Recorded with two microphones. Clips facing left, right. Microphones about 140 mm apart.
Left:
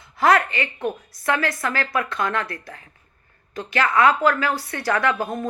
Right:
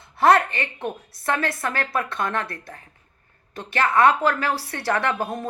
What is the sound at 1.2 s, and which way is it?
A woman's voice, 25° right (ahead or behind).